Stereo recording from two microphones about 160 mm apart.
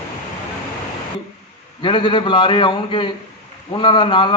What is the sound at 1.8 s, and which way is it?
A man's voice, 30° left (ahead or behind).